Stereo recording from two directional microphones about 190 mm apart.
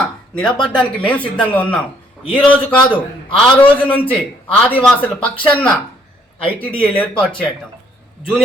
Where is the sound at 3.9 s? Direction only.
5° left (ahead or behind).